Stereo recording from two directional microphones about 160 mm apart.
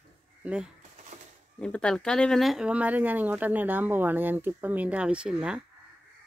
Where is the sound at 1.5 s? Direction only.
5° left (ahead or behind).